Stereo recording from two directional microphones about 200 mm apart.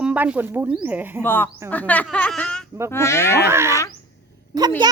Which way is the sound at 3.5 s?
15° right (ahead or behind).